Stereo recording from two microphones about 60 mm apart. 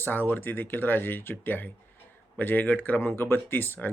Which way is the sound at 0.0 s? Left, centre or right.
Left.